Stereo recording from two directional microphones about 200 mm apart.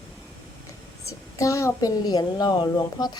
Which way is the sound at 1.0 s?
15° left (ahead or behind).